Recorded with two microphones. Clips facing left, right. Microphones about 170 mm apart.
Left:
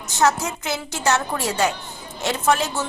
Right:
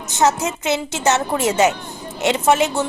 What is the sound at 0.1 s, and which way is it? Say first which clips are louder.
A woman's voice: right 2 dB; 20° right (ahead or behind).